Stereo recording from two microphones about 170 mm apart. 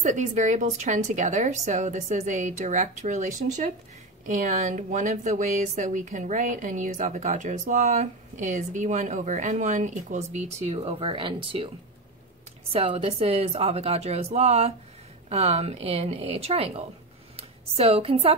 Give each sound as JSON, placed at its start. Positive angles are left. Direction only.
{"t": 0.0, "sound": "speech", "side_deg": -45}
{"t": 12.7, "sound": "a woman's voice", "side_deg": -35}